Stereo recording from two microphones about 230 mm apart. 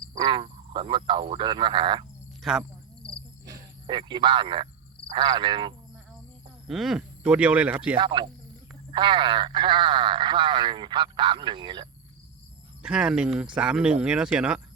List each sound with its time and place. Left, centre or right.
0.2 s speech: right
2.4 s cricket: centre
3.4 s speech: centre
6.7 s speech: centre
7.9 s speech: right
12.8 s speech: centre